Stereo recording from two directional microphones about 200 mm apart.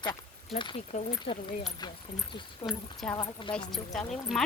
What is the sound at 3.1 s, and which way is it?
Speech, 25° left (ahead or behind).